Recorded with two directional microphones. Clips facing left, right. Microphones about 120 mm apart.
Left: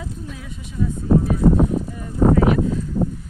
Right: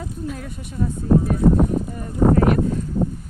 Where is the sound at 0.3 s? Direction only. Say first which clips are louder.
Right 3 dB; 50° right (ahead or behind).